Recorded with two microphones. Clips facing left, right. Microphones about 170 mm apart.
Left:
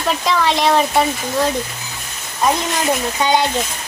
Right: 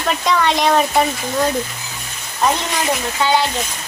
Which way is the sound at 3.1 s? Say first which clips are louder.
Right 1 dB; 20° left (ahead or behind).